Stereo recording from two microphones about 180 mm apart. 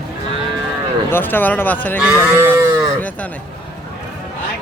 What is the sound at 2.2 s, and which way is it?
Livestock, 10° right (ahead or behind).